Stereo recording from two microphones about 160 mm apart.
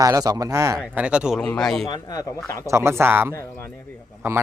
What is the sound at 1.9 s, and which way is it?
Speech, 25° left (ahead or behind).